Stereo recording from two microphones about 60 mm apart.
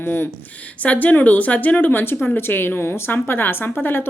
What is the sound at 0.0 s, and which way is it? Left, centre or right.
A woman's voice, left.